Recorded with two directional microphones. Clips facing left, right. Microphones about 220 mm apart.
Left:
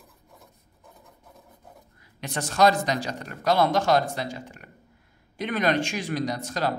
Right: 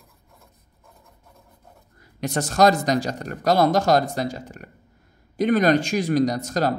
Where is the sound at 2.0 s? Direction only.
45° right (ahead or behind).